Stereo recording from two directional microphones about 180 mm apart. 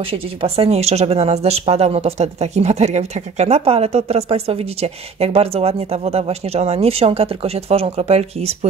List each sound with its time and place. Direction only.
0.0 s speech: 30° right (ahead or behind)